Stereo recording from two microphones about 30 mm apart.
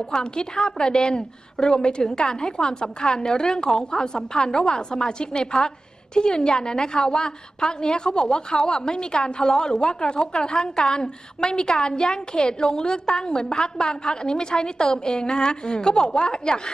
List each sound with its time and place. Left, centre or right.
0.2 s a woman's voice: left
7.0 s a woman's voice: centre
7.6 s a woman's voice: left